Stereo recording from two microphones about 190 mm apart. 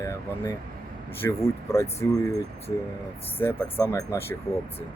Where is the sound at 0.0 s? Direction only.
15° left (ahead or behind).